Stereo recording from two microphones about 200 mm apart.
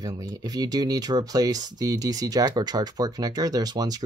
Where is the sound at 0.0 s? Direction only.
20° right (ahead or behind).